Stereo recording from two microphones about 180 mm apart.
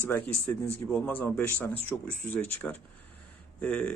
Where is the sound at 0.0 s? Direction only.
10° left (ahead or behind).